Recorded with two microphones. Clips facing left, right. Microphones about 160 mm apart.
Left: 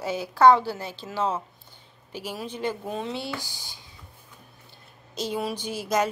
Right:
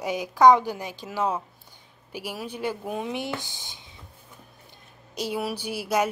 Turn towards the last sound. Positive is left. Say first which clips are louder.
# even
turn(degrees=-10)  # may be behind; listen again after turning